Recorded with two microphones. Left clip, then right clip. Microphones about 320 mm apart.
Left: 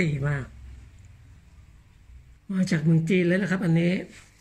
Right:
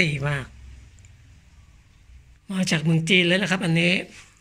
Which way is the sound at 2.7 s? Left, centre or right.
Centre.